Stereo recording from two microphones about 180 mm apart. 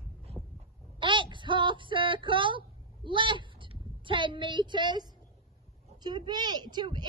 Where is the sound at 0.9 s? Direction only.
25° right (ahead or behind).